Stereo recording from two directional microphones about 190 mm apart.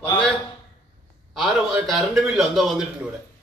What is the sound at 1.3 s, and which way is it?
A man's voice, centre (ahead or behind).